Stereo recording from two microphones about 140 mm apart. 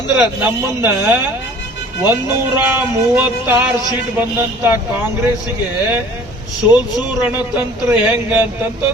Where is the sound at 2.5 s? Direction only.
15° right (ahead or behind).